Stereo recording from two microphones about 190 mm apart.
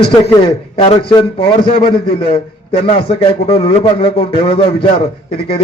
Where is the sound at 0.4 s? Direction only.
25° left (ahead or behind).